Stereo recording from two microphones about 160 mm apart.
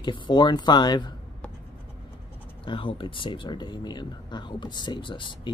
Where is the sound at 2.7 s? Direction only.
35° left (ahead or behind).